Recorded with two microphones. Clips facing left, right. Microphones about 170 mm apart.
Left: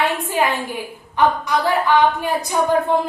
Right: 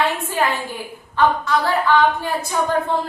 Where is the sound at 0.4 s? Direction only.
15° left (ahead or behind).